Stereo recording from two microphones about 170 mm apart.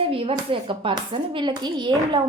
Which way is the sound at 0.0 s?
35° right (ahead or behind).